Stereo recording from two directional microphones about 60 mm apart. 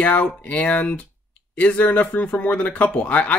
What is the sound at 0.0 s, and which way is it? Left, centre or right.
Speech, left.